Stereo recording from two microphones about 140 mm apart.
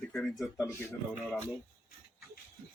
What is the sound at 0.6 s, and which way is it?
Speech, 15° left (ahead or behind).